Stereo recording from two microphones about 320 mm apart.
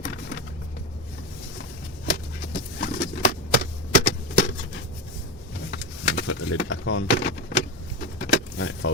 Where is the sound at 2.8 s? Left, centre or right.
Left.